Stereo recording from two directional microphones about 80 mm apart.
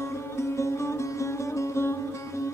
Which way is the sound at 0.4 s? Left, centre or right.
Left.